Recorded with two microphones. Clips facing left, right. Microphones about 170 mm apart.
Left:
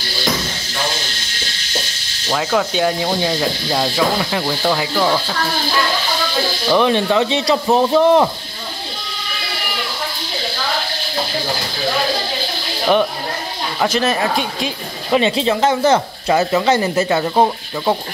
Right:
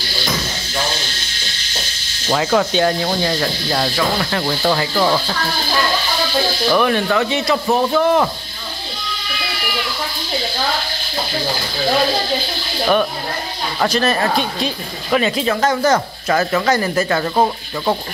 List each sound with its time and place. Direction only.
2.2 s speech: centre (ahead or behind)
6.7 s speech: 25° left (ahead or behind)
13.8 s speech: 20° left (ahead or behind)